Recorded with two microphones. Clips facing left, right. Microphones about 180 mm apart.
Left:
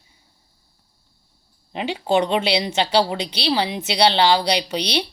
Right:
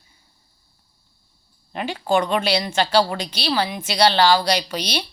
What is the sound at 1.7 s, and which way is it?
A woman's voice, 20° left (ahead or behind).